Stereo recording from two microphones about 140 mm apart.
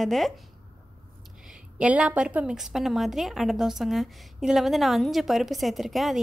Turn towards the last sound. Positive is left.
turn(degrees=0)  # may be behind; listen again after turning